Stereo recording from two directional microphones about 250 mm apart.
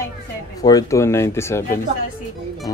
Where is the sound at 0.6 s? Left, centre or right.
Centre.